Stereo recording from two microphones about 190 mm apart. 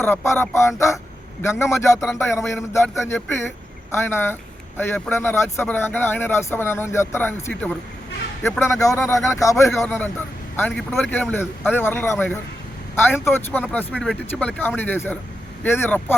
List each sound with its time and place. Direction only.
0.0 s speech: 15° left (ahead or behind)
3.9 s speech: 10° left (ahead or behind)